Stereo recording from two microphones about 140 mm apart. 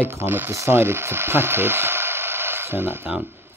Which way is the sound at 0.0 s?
15° right (ahead or behind).